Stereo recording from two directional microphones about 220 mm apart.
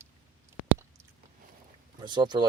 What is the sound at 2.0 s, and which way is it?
Speech, 20° right (ahead or behind).